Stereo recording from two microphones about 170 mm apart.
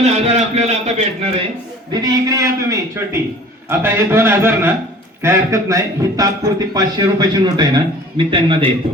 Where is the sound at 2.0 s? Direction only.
20° right (ahead or behind).